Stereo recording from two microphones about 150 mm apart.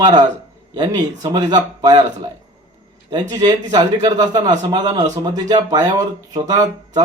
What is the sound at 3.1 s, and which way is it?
A man's voice, 25° right (ahead or behind).